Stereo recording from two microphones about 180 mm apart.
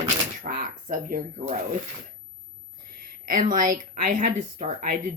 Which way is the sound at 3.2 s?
50° right (ahead or behind).